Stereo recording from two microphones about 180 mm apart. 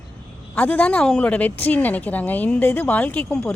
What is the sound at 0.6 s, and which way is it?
Speech, 10° left (ahead or behind).